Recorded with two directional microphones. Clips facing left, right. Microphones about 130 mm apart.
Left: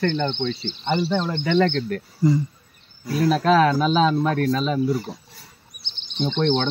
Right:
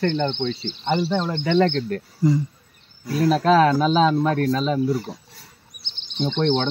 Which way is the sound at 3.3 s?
30° right (ahead or behind).